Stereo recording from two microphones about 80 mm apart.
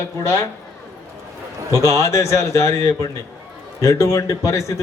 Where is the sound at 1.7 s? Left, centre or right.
Right.